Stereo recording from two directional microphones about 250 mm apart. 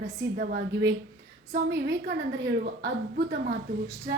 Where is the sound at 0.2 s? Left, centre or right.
Right.